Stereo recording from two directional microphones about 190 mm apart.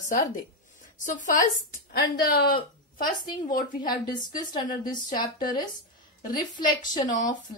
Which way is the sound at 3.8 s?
20° left (ahead or behind).